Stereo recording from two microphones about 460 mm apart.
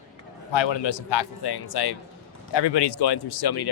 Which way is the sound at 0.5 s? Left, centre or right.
Left.